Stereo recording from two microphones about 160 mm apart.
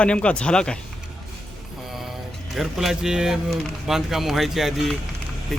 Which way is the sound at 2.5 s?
Centre (ahead or behind).